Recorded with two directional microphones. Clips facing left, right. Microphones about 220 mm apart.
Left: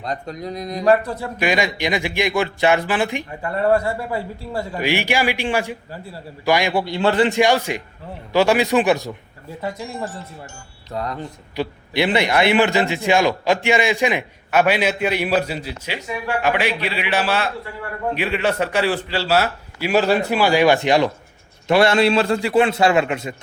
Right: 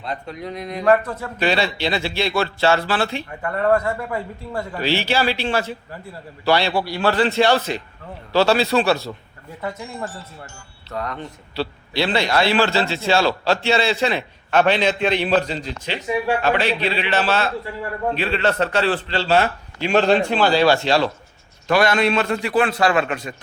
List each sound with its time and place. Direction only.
0.0 s mantra: 40° left (ahead or behind)
0.9 s a man's voice: 15° left (ahead or behind)
3.8 s mantra: 30° left (ahead or behind)
4.5 s a man's voice: 15° left (ahead or behind)
10.9 s a man's voice: 30° left (ahead or behind)
11.5 s a man's voice: 15° left (ahead or behind)
21.7 s a man's voice: 25° left (ahead or behind)